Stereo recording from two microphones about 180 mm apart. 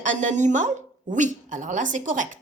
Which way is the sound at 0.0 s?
45° right (ahead or behind).